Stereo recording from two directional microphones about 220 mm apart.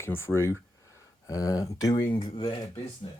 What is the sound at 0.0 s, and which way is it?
Speech, 10° left (ahead or behind).